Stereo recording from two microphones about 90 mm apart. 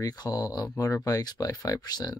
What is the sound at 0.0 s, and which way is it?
Speech, 45° left (ahead or behind).